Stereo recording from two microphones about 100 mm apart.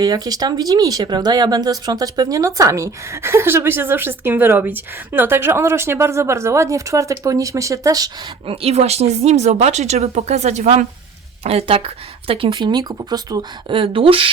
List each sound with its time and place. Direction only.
0.0 s speech: 40° right (ahead or behind)
8.4 s speech: 90° right
12.3 s speech: 60° right (ahead or behind); by 13.4 s 40° right (ahead or behind)
13.7 s speech: 60° right (ahead or behind)